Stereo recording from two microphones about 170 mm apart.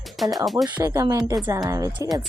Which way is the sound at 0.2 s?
Centre (ahead or behind).